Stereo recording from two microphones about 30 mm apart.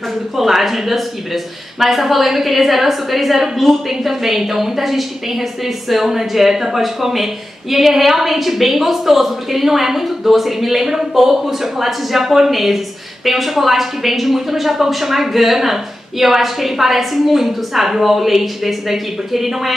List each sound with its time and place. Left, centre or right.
0.4 s speech: centre